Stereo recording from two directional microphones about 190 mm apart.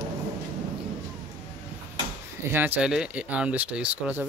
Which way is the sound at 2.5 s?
10° right (ahead or behind).